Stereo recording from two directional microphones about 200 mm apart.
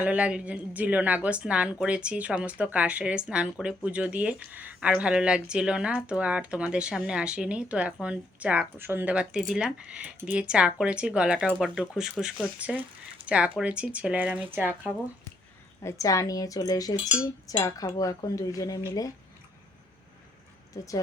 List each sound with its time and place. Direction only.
0.0 s speech: 5° right (ahead or behind)
15.8 s cutlery: 15° left (ahead or behind)